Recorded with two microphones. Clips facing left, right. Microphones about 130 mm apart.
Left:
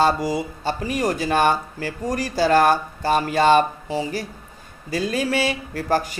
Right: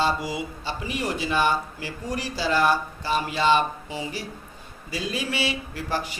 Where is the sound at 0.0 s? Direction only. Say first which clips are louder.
Left 6 dB; 40° left (ahead or behind).